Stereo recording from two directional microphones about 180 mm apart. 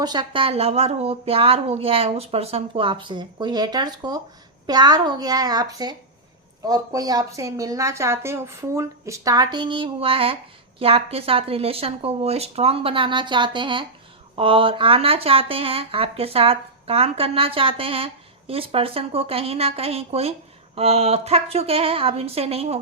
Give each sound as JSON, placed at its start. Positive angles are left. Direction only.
{"t": 0.0, "sound": "speech", "side_deg": -25}